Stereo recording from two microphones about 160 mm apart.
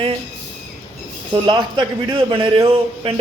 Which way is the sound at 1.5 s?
30° right (ahead or behind).